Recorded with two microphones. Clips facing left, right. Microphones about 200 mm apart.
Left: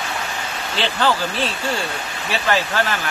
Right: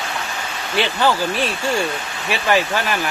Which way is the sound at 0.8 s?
15° right (ahead or behind).